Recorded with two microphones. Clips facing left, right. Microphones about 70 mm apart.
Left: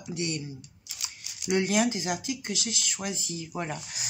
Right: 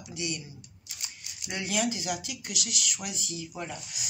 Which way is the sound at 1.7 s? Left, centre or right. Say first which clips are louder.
Left 4 dB; left.